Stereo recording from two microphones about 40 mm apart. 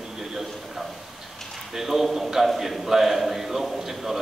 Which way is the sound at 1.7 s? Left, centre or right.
Centre.